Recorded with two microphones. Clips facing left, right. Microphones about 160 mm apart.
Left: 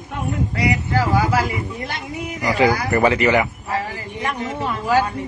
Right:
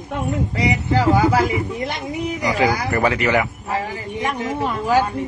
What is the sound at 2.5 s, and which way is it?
Speech, centre (ahead or behind).